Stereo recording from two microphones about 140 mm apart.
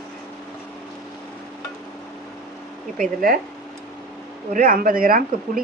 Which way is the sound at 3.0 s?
85° right.